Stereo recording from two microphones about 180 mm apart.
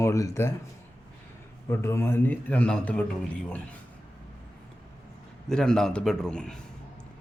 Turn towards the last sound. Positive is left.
turn(degrees=5)  # may be behind; listen again after turning